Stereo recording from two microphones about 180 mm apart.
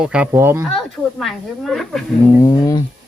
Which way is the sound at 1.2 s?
Centre (ahead or behind).